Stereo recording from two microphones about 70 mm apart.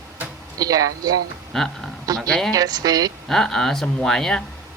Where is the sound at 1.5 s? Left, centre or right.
Centre.